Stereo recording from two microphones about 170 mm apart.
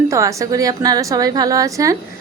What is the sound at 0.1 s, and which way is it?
A woman's voice, 20° right (ahead or behind).